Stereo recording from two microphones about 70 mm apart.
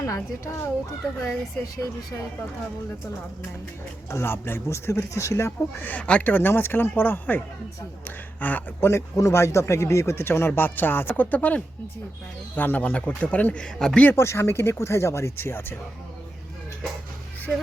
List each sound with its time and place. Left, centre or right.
0.0 s a child's voice: left
4.1 s speech: left
5.5 s speech: left
6.3 s speech: left
8.9 s speech: left; by 14.0 s centre
14.0 s speech: left